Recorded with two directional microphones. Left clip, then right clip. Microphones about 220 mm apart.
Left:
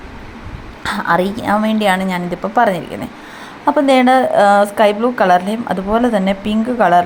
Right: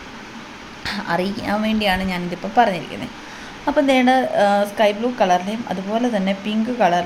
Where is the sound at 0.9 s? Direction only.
10° left (ahead or behind).